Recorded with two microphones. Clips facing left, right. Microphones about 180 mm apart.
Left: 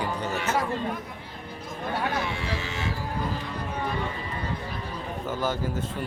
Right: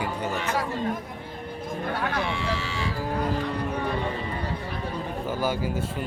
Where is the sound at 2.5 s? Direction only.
65° right (ahead or behind).